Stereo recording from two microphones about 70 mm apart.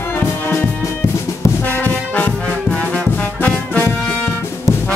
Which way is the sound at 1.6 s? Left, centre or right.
Left.